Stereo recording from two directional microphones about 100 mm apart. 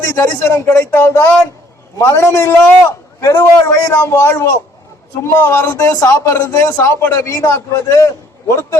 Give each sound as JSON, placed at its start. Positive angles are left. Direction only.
{"t": 0.0, "sound": "a man's voice", "side_deg": 25}